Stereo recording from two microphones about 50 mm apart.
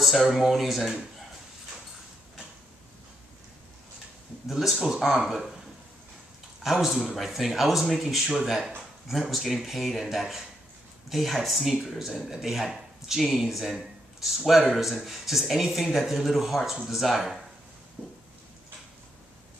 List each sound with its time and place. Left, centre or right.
0.0 s speech: centre
4.5 s speech: centre
6.6 s speech: centre
18.0 s a sound: right